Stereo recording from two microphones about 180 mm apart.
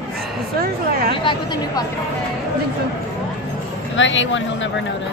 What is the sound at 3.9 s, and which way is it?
Speech, 90° left.